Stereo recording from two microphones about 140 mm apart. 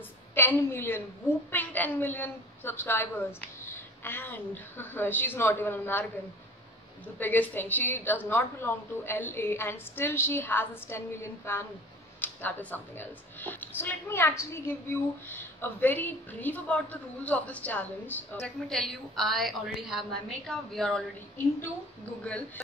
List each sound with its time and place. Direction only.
0.3 s a woman's voice: 15° left (ahead or behind)
7.2 s a woman's voice: 10° left (ahead or behind)